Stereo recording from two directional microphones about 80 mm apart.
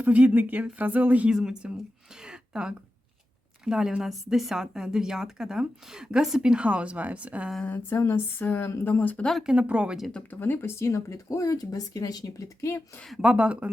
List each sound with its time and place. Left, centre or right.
0.0 s speech: centre
1.3 s a woman's voice: centre
2.2 s a sound: centre
3.6 s a woman's voice: centre
7.6 s speech: left
9.4 s a woman's voice: centre
10.2 s speech: left
13.2 s a woman's voice: centre